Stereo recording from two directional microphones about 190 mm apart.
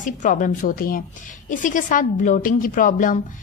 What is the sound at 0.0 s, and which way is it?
A woman's voice, 45° left (ahead or behind).